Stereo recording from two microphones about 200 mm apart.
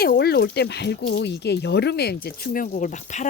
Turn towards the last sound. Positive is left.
turn(degrees=35)  # may be behind; listen again after turning